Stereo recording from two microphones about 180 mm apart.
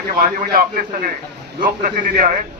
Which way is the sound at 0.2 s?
55° right (ahead or behind).